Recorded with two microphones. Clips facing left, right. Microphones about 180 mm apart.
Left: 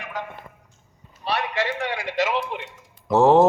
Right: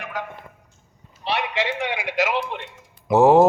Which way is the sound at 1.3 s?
25° right (ahead or behind).